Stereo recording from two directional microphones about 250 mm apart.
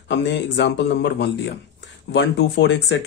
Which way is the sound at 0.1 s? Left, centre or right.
Left.